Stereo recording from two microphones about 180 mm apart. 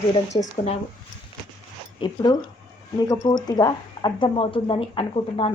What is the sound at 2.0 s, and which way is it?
A woman's voice, 25° left (ahead or behind).